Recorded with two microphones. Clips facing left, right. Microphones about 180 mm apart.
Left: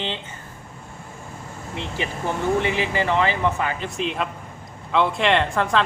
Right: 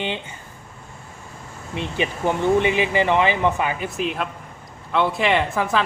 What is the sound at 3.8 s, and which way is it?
Speech, 5° right (ahead or behind).